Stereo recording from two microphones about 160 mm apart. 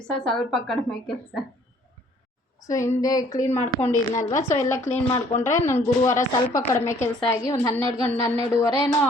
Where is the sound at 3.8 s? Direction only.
45° left (ahead or behind).